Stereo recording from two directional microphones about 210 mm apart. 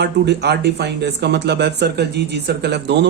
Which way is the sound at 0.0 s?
55° right (ahead or behind).